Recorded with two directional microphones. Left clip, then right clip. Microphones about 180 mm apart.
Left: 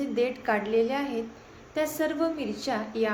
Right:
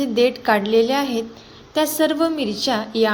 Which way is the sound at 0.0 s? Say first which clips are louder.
Right 9 dB; 45° right (ahead or behind).